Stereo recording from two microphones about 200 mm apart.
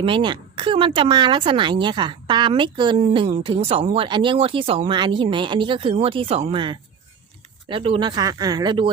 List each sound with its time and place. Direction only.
0.0 s speech: 25° right (ahead or behind)